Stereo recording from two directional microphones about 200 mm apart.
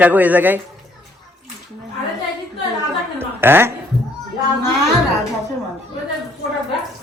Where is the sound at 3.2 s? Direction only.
10° right (ahead or behind).